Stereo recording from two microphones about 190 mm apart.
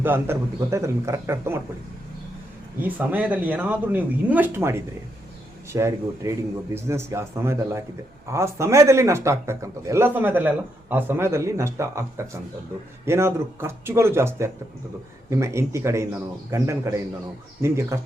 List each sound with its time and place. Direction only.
0.0 s a man's voice: 10° right (ahead or behind)
2.8 s a man's voice: 10° right (ahead or behind)